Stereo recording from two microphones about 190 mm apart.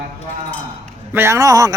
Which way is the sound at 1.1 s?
15° right (ahead or behind).